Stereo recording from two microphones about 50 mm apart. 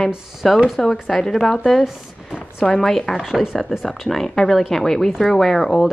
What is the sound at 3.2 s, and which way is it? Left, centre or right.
Speech, centre.